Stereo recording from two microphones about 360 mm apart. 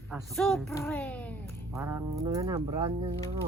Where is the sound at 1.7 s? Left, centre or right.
Centre.